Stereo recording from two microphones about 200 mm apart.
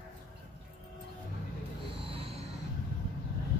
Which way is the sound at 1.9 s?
25° right (ahead or behind).